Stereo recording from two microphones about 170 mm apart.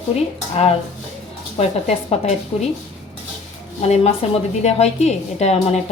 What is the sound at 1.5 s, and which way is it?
A woman's voice, 35° left (ahead or behind).